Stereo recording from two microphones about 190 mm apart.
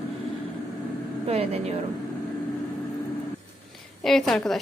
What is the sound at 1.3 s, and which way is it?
Speech, 35° right (ahead or behind).